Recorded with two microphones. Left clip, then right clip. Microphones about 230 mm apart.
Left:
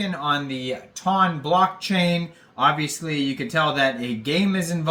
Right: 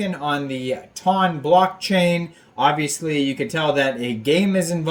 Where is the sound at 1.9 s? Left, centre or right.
Centre.